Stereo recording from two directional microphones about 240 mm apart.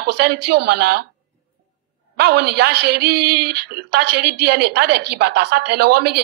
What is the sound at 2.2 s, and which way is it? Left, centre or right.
A woman's voice, right.